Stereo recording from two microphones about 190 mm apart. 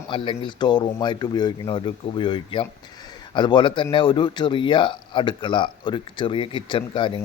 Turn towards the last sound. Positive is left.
turn(degrees=25)  # may be behind; listen again after turning